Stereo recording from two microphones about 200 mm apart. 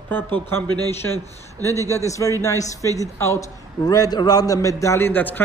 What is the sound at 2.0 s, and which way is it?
A man's voice, 15° left (ahead or behind).